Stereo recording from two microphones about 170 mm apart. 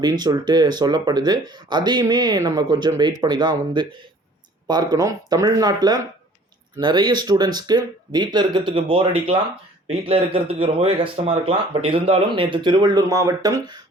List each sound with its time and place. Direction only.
0.0 s speech: 25° right (ahead or behind)